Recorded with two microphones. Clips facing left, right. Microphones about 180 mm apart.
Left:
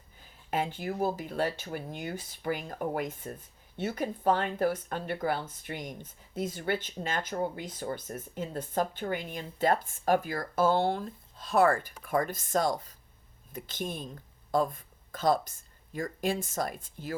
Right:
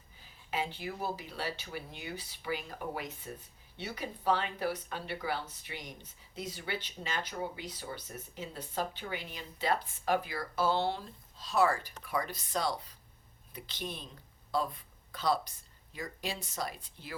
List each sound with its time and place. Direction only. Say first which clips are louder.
0.5 s speech: left 5 dB; 50° left (ahead or behind)